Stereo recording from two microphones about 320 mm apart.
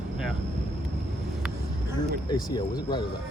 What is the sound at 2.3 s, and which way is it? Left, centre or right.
Speech, centre.